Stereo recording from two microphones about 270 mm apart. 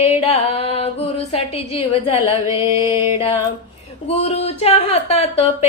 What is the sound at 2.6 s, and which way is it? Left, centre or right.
Music, centre.